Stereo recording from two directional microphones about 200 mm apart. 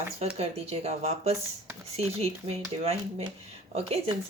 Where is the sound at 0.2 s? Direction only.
30° right (ahead or behind).